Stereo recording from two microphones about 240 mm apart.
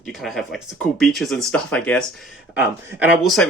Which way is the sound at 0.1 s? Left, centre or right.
Centre.